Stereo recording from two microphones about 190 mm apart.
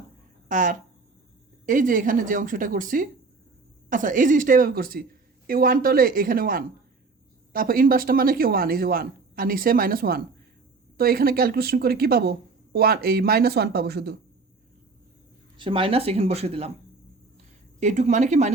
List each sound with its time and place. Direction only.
0.4 s speech: 45° right (ahead or behind)
15.5 s speech: 25° right (ahead or behind)
17.7 s speech: 40° right (ahead or behind)